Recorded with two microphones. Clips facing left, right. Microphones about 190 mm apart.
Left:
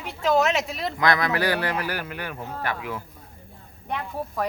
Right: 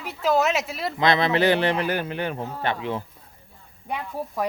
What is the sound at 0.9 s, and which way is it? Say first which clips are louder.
Speech: right 3 dB; 25° right (ahead or behind).